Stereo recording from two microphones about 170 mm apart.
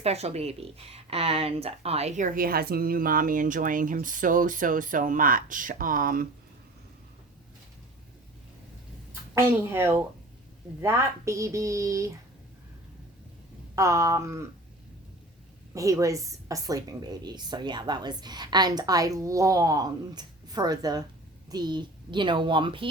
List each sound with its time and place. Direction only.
0.0 s speech: 40° right (ahead or behind); by 6.2 s 55° right (ahead or behind)
9.3 s speech: 15° right (ahead or behind)
13.7 s speech: 20° right (ahead or behind)
15.7 s a woman's voice: 20° right (ahead or behind)